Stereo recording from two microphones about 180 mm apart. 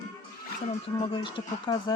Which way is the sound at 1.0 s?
25° left (ahead or behind).